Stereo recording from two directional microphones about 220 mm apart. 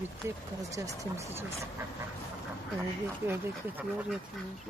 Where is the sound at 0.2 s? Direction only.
10° right (ahead or behind).